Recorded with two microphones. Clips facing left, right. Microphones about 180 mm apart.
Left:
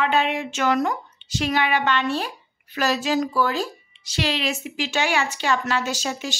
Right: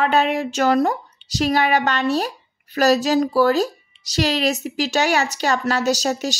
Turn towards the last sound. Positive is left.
turn(degrees=-40)  # may be behind; listen again after turning